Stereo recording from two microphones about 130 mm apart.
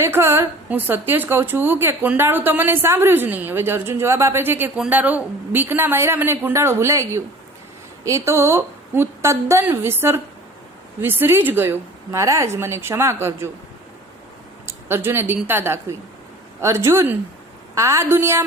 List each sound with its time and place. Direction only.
0.0 s a woman's voice: 20° right (ahead or behind)
14.7 s a woman's voice: 20° right (ahead or behind)